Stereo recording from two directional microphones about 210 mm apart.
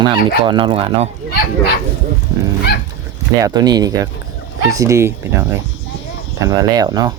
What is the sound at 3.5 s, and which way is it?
Speech, 20° right (ahead or behind).